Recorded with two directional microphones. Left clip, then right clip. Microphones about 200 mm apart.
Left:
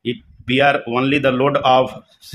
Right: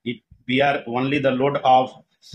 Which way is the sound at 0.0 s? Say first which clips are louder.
Left 6 dB; 30° left (ahead or behind).